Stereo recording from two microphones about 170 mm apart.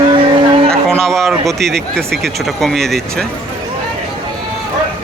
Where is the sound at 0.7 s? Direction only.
5° left (ahead or behind).